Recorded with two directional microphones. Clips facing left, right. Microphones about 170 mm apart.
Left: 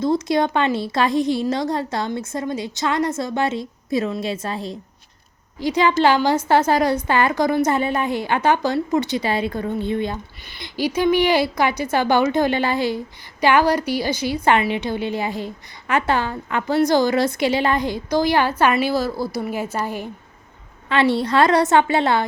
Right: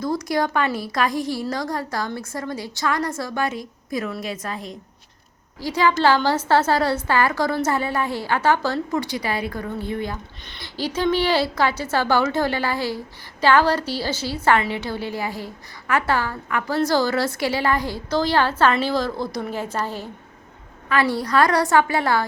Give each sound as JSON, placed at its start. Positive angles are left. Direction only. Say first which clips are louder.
{"t": 0.0, "sound": "a woman's voice", "louder": "left 4 dB", "side_deg": 25}
{"t": 10.4, "sound": "a woman's voice", "louder": "left 5 dB", "side_deg": 10}
{"t": 20.9, "sound": "a woman's voice", "louder": "left 2 dB", "side_deg": 25}